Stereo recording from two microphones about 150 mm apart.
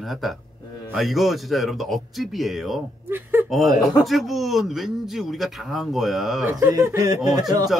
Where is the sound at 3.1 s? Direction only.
15° right (ahead or behind).